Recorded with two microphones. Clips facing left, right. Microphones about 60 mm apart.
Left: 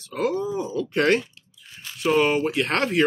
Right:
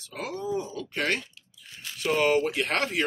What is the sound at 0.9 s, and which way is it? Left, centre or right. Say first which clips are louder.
Speech: left 8 dB; left.